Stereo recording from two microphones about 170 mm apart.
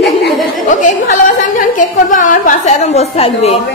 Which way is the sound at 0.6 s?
50° left (ahead or behind).